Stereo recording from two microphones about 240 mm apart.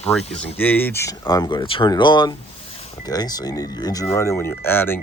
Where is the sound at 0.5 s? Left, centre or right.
Centre.